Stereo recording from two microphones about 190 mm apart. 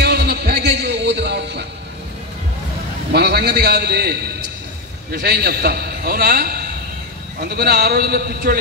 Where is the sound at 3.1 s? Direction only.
60° right (ahead or behind).